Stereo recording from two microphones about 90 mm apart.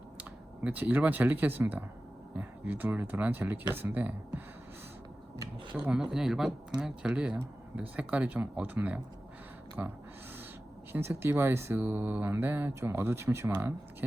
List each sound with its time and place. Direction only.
0.2 s speech: 15° right (ahead or behind)
5.7 s speech: 15° right (ahead or behind)
10.9 s speech: 25° right (ahead or behind)